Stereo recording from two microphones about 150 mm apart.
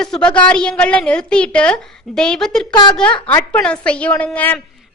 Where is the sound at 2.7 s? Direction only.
30° left (ahead or behind).